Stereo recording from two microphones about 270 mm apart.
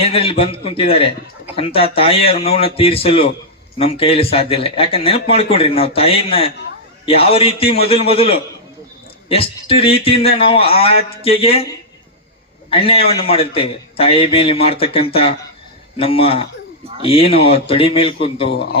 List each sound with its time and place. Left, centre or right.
0.0 s speech: left
12.7 s speech: left